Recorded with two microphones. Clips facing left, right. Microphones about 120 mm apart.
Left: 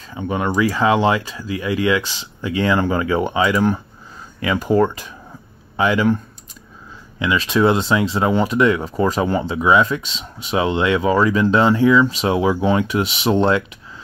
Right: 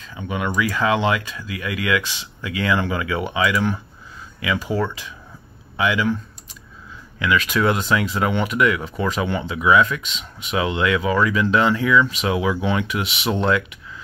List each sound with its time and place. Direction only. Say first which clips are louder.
0.2 s speech: left 4 dB; 35° left (ahead or behind)
4.4 s speech: left 6 dB; 45° left (ahead or behind)
7.2 s speech: left 3 dB; 25° left (ahead or behind)